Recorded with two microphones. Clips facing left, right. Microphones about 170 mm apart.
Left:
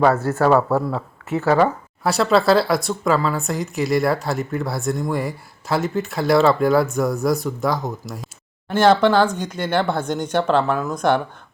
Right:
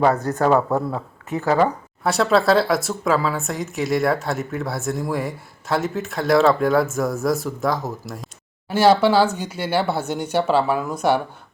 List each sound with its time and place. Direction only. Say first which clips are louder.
0.0 s speech: left 1 dB; 15° right (ahead or behind)
2.0 s a woman's voice: left 1 dB; centre (ahead or behind)